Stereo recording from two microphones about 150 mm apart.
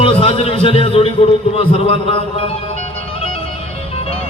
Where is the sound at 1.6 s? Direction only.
40° left (ahead or behind).